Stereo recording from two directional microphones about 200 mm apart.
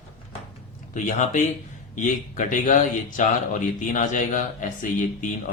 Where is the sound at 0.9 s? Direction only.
40° left (ahead or behind).